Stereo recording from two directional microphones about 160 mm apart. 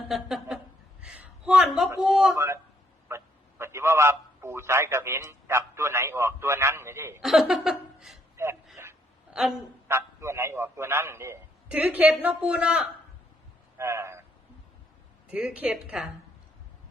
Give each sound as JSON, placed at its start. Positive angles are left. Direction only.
{"t": 0.1, "sound": "a sound", "side_deg": 0}
{"t": 2.0, "sound": "a man's voice", "side_deg": -5}
{"t": 2.3, "sound": "a man's voice", "side_deg": -20}
{"t": 7.2, "sound": "chuckle", "side_deg": 0}
{"t": 8.8, "sound": "a sound", "side_deg": -15}
{"t": 9.3, "sound": "a woman's voice", "side_deg": -5}
{"t": 9.9, "sound": "a man's voice", "side_deg": -15}
{"t": 13.7, "sound": "a man's voice", "side_deg": -15}
{"t": 15.3, "sound": "a man's voice", "side_deg": -5}